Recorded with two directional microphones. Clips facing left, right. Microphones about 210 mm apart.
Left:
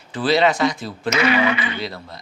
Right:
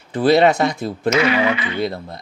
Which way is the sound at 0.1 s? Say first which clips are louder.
Right 4 dB; 60° right (ahead or behind).